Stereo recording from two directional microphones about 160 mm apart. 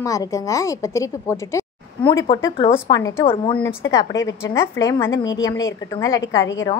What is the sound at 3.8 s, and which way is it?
A woman's voice, 20° left (ahead or behind).